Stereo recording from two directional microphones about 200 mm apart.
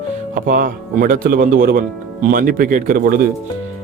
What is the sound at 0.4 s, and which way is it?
Speech, 45° right (ahead or behind).